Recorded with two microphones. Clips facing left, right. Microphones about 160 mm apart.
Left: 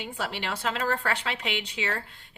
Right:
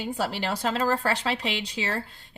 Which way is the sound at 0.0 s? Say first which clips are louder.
Right 5 dB; 40° right (ahead or behind).